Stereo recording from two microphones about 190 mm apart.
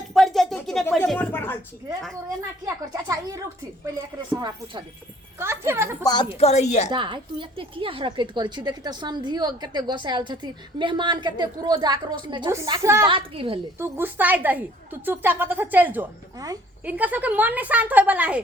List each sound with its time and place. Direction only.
0.1 s a sound: centre (ahead or behind)
2.6 s a woman's voice: 15° right (ahead or behind)
6.0 s a woman's voice: 20° left (ahead or behind)
6.4 s a woman's voice: 35° left (ahead or behind)
6.9 s a woman's voice: 25° right (ahead or behind)
13.1 s a woman's voice: 30° right (ahead or behind)
13.7 s a woman's voice: 15° right (ahead or behind)